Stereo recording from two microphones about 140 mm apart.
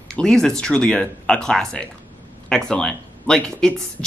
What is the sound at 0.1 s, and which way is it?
Speech, 5° left (ahead or behind).